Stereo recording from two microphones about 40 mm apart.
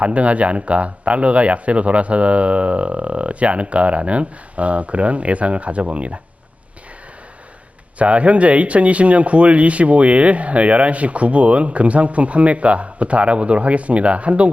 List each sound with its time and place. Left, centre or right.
0.0 s speech: right
7.9 s speech: right